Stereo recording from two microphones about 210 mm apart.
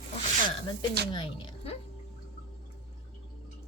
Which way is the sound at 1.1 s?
20° left (ahead or behind).